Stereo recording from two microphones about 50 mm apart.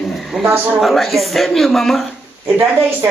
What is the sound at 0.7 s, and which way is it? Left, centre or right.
Speech, centre.